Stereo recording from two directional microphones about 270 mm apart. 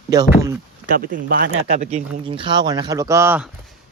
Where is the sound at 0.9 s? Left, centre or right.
Right; by 3.5 s centre.